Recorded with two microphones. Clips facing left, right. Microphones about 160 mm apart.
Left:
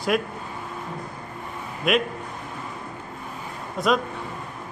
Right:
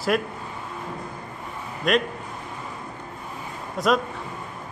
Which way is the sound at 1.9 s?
5° left (ahead or behind).